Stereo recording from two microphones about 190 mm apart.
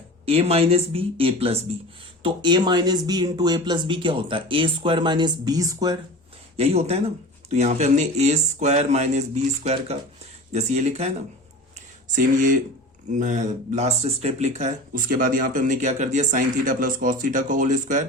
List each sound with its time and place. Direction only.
0.3 s speech: 30° right (ahead or behind)
6.6 s speech: 35° right (ahead or behind)
12.1 s speech: 45° right (ahead or behind)